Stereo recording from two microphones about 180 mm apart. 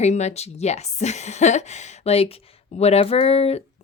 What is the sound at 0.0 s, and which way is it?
A woman's voice, 40° left (ahead or behind).